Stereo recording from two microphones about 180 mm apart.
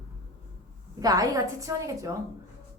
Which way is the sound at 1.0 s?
20° right (ahead or behind).